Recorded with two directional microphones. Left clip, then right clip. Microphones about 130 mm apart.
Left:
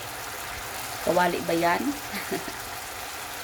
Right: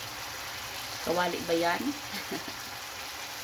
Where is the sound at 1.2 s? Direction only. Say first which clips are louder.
Left 4 dB; 25° left (ahead or behind).